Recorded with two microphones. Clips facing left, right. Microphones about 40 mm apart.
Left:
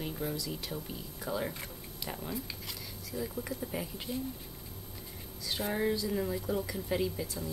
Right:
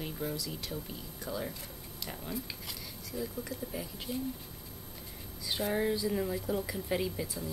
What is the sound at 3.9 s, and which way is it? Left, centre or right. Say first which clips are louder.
Speech: even; centre.